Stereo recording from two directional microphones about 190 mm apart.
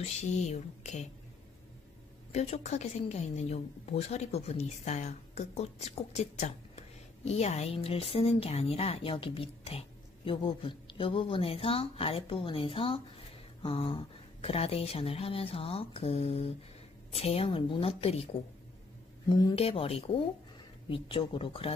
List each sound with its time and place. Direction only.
0.0 s a woman's voice: 35° left (ahead or behind)
2.3 s a woman's voice: 35° left (ahead or behind)